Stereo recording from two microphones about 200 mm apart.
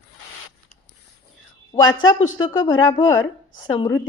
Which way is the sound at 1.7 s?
20° left (ahead or behind).